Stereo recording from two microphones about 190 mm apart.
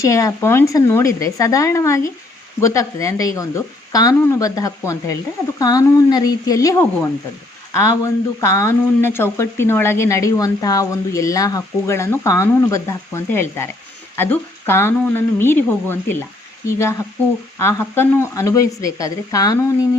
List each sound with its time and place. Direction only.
0.0 s speech: 15° left (ahead or behind)